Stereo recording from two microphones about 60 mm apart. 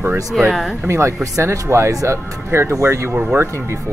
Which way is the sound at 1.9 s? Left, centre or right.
Right.